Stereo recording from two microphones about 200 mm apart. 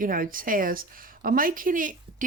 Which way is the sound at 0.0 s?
45° right (ahead or behind).